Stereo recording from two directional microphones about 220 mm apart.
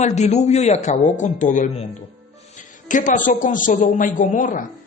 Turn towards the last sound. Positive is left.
turn(degrees=35)  # may be behind; listen again after turning